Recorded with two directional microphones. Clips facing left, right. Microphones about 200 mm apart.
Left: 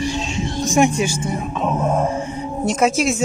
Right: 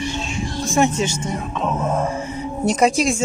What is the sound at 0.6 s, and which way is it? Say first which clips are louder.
Speech: left 2 dB; 15° left (ahead or behind).